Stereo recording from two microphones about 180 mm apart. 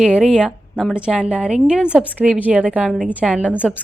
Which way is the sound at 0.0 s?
5° right (ahead or behind).